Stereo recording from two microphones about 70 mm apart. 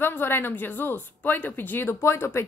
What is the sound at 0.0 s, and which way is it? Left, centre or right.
Speech, left.